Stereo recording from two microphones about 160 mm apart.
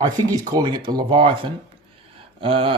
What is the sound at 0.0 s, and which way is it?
Speech, 25° right (ahead or behind).